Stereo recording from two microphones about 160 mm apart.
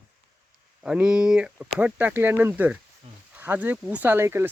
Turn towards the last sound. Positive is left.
turn(degrees=-15)  # may be behind; listen again after turning